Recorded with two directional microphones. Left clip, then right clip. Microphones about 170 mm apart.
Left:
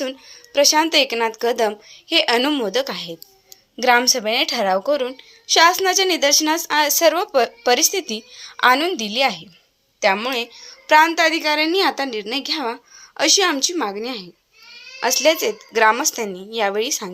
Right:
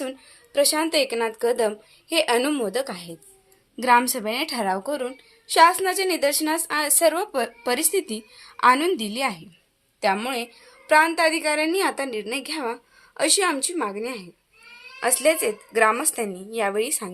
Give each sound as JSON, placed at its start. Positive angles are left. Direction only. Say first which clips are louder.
{"t": 0.0, "sound": "a woman's voice", "louder": "left 5 dB", "side_deg": 15}